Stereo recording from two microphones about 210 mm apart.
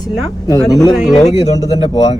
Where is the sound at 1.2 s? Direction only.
30° left (ahead or behind).